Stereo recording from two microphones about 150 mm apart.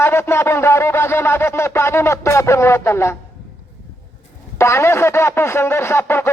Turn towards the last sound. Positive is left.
turn(degrees=15)  # may be behind; listen again after turning